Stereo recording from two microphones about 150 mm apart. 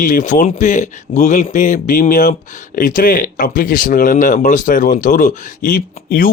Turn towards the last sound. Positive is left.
turn(degrees=70)  # may be behind; listen again after turning